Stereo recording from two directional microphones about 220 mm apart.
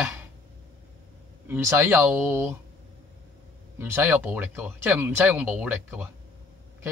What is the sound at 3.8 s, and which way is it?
Speech, 10° right (ahead or behind).